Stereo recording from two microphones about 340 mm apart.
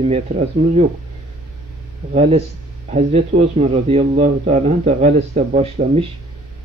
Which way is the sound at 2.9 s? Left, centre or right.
Centre.